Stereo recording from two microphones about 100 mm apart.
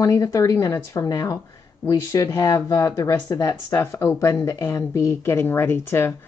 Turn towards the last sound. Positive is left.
turn(degrees=20)  # may be behind; listen again after turning